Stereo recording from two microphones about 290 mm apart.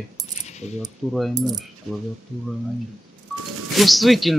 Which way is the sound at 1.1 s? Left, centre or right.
Centre.